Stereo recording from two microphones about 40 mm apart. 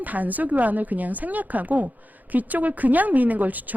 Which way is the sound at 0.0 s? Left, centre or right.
Right.